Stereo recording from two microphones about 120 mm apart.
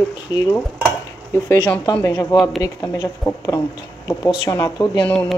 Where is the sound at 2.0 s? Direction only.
30° left (ahead or behind).